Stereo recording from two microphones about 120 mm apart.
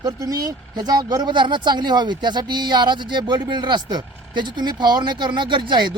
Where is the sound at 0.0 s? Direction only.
30° right (ahead or behind).